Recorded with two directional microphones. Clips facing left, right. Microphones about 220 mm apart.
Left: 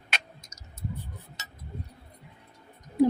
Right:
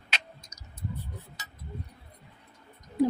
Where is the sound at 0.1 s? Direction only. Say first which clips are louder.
Left 2 dB; 50° left (ahead or behind).